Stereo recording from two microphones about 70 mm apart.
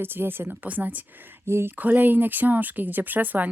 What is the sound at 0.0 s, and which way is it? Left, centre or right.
Speech, right.